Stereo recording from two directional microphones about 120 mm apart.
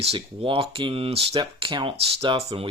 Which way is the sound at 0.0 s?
50° right (ahead or behind).